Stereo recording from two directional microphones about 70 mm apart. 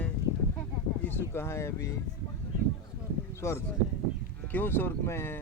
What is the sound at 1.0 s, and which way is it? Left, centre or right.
Speech, left.